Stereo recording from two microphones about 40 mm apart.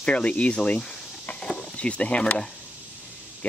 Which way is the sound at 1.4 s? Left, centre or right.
Left.